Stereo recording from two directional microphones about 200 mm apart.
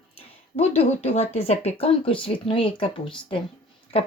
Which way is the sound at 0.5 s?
30° left (ahead or behind).